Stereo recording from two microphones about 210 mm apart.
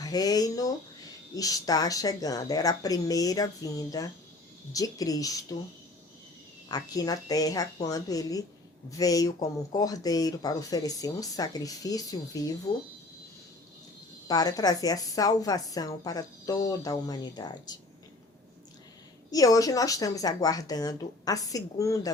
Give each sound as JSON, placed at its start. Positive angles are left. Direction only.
{"t": 0.0, "sound": "speech", "side_deg": 15}
{"t": 6.7, "sound": "speech", "side_deg": 20}
{"t": 14.3, "sound": "speech", "side_deg": 20}
{"t": 19.3, "sound": "speech", "side_deg": 15}